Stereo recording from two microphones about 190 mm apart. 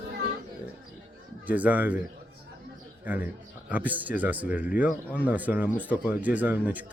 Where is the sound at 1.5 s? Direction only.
10° right (ahead or behind).